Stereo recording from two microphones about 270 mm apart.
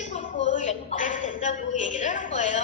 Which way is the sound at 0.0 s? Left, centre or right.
Left.